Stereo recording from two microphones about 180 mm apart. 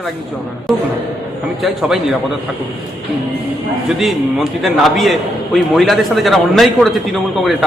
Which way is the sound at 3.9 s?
Centre (ahead or behind).